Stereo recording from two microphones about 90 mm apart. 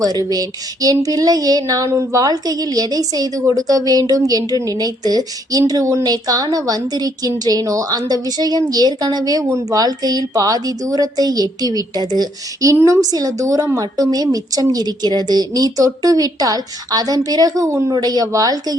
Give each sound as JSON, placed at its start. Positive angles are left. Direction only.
{"t": 0.0, "sound": "speech", "side_deg": -45}
{"t": 12.7, "sound": "a woman's voice", "side_deg": -35}
{"t": 17.9, "sound": "speech", "side_deg": -45}